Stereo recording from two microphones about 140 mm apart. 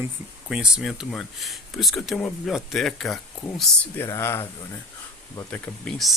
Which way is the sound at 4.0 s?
20° left (ahead or behind).